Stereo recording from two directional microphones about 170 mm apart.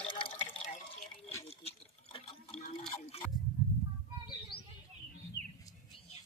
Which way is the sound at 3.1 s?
35° left (ahead or behind).